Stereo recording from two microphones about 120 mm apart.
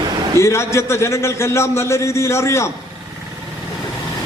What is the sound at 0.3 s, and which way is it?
A man's voice, 25° left (ahead or behind).